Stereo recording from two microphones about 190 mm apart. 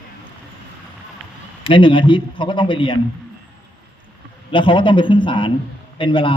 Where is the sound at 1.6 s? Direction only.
25° left (ahead or behind).